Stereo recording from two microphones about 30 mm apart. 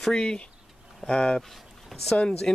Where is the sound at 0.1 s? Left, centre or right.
Left.